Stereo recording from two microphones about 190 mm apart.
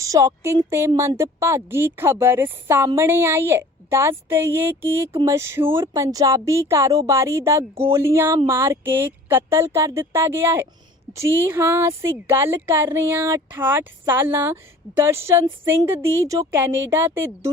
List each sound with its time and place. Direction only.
0.0 s speech: 15° right (ahead or behind)